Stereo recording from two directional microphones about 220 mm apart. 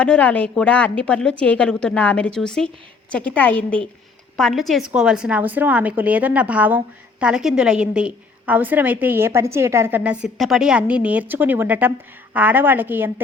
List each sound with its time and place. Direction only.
0.0 s a woman's voice: 5° left (ahead or behind)